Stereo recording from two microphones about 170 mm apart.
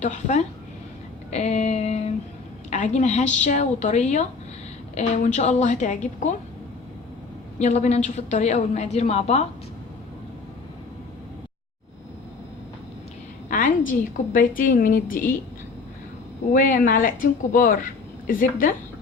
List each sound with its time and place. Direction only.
0.0 s a woman's voice: 45° left (ahead or behind)
7.6 s a woman's voice: 40° left (ahead or behind)
13.5 s a sound: 50° left (ahead or behind)
14.3 s a woman's voice: 55° left (ahead or behind)
16.5 s a woman's voice: 55° left (ahead or behind)